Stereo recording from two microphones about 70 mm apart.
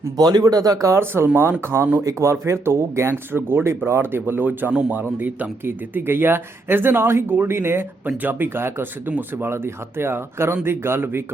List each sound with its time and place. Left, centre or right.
0.2 s speech: right
0.9 s a man's voice: right